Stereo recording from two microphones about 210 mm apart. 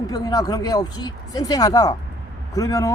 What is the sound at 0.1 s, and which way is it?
Speech, 20° left (ahead or behind).